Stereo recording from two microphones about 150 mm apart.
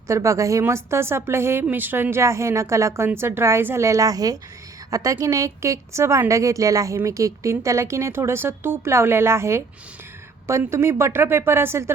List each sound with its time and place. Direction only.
0.1 s a woman's voice: 20° right (ahead or behind)